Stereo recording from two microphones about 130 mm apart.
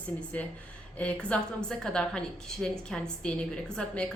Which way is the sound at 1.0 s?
10° left (ahead or behind).